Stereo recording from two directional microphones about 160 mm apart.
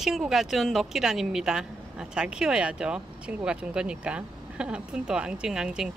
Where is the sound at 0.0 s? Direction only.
Centre (ahead or behind).